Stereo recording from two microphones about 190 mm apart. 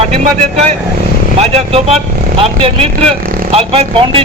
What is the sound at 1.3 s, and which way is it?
Speech, 35° right (ahead or behind).